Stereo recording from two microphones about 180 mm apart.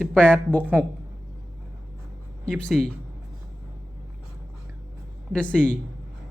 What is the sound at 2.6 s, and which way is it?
Speech, 5° left (ahead or behind).